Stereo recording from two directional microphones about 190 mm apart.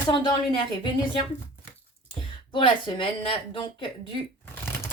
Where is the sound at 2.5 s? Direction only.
25° left (ahead or behind).